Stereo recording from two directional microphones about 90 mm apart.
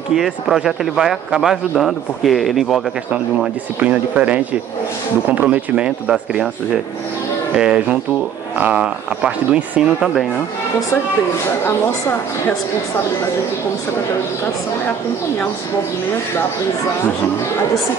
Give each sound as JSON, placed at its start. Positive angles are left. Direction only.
{"t": 0.1, "sound": "speech", "side_deg": -5}
{"t": 3.8, "sound": "speech", "side_deg": -15}
{"t": 7.5, "sound": "speech", "side_deg": -10}